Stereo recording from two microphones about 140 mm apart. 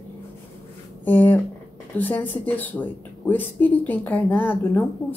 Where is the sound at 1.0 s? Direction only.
15° left (ahead or behind).